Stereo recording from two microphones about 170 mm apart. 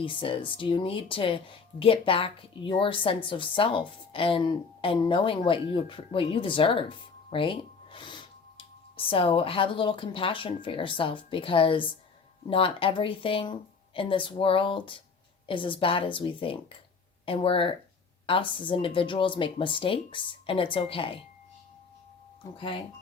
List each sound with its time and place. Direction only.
0.0 s speech: 30° left (ahead or behind)
22.5 s speech: 30° left (ahead or behind)